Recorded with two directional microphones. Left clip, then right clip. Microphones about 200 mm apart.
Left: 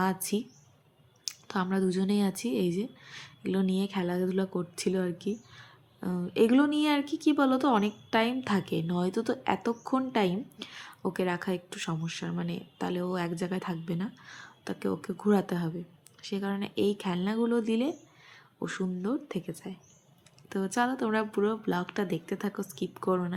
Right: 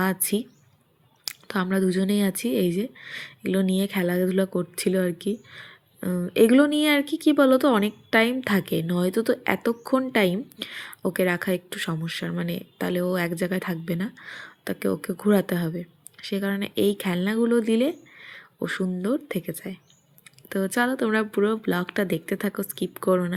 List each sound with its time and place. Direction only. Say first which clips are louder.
0.0 s speech: right 4 dB; 15° right (ahead or behind)